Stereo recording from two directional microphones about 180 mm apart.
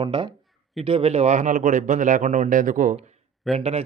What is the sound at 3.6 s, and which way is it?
Speech, 35° right (ahead or behind).